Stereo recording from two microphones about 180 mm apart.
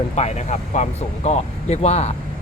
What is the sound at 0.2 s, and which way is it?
Speech, 40° left (ahead or behind).